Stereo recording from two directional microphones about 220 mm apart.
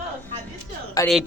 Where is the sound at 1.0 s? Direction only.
15° left (ahead or behind).